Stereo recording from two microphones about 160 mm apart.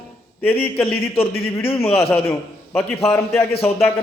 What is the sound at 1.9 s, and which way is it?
Speech, 35° left (ahead or behind).